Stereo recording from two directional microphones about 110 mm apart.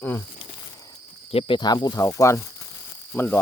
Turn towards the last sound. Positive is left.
turn(degrees=15)  # may be behind; listen again after turning